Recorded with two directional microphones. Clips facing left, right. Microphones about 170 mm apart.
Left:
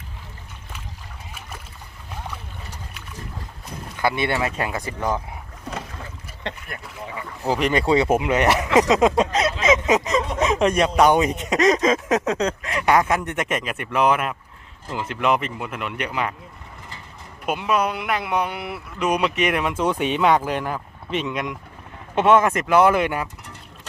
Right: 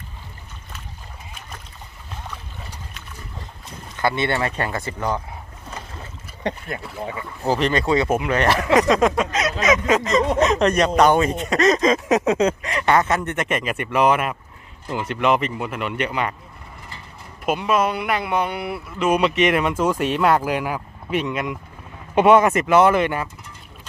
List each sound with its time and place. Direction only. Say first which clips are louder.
1.4 s boat: left 2 dB; 5° left (ahead or behind)
3.9 s speech: right 1 dB; 10° left (ahead or behind)
6.7 s speech: right 5 dB; 30° right (ahead or behind)
7.6 s speech: left 2 dB; 15° left (ahead or behind); by 16.3 s centre (ahead or behind)
17.4 s speech: right 2 dB; centre (ahead or behind)